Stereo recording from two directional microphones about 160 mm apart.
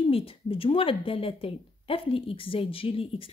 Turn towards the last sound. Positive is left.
turn(degrees=35)  # may be behind; listen again after turning